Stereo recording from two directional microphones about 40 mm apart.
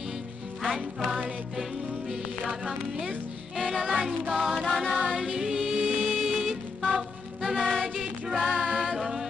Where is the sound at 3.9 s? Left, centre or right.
Centre.